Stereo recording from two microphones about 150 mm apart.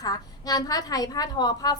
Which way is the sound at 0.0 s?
25° left (ahead or behind).